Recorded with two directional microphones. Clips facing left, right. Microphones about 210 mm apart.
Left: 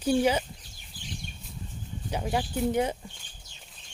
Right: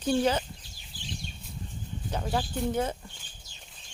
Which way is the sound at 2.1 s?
15° left (ahead or behind).